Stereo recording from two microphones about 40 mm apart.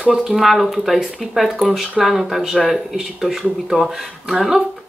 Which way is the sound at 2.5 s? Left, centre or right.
Centre.